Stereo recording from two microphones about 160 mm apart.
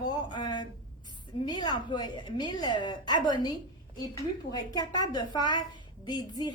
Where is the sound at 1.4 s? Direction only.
25° left (ahead or behind).